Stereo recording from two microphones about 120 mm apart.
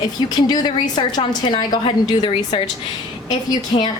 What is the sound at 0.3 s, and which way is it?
A woman's voice, 35° left (ahead or behind).